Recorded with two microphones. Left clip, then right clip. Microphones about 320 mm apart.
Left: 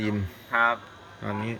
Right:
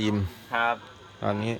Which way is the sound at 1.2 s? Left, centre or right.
Centre.